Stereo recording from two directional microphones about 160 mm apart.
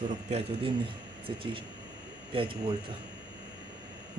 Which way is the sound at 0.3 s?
40° right (ahead or behind).